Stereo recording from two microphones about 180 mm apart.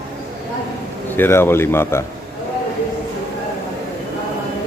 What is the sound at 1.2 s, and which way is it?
Speech, 15° left (ahead or behind).